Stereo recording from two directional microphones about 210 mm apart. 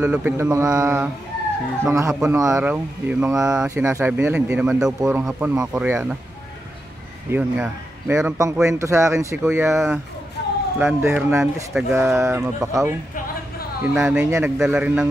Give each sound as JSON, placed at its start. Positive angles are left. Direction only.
{"t": 0.0, "sound": "a man's voice", "side_deg": -10}
{"t": 7.2, "sound": "a man's voice", "side_deg": -5}
{"t": 10.4, "sound": "a sound", "side_deg": 55}
{"t": 10.8, "sound": "a man's voice", "side_deg": -10}
{"t": 13.9, "sound": "a man's voice", "side_deg": -5}